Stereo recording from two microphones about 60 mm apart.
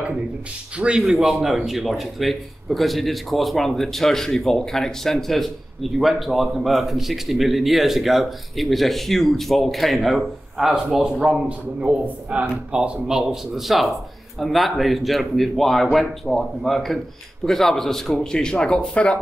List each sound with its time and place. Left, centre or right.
0.7 s a man's voice: centre
1.1 s a man's voice: centre